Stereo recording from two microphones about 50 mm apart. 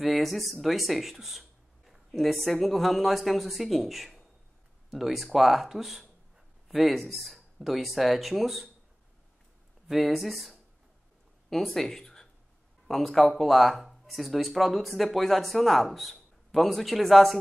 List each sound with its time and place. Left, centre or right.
0.0 s speech: centre
9.8 s speech: centre